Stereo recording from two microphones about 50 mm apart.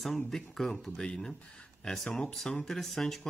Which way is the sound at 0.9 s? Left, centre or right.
Centre.